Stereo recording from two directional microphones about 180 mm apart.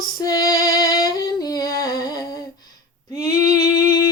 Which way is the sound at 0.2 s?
20° left (ahead or behind).